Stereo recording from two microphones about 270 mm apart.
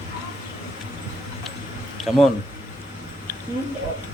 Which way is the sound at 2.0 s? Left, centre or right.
Centre.